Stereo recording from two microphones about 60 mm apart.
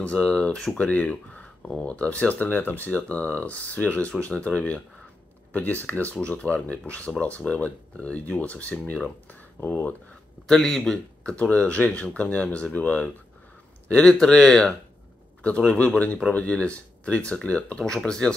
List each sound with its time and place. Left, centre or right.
0.0 s speech: centre
10.4 s speech: centre
11.3 s speech: left
13.8 s speech: centre